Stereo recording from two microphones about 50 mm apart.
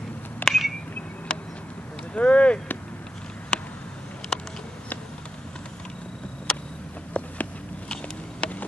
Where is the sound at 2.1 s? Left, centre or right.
Left.